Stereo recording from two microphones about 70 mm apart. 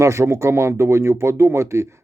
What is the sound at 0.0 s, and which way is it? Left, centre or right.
Speech, right.